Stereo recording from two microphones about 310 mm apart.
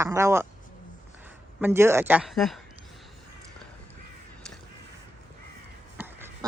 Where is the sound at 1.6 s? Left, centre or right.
Centre.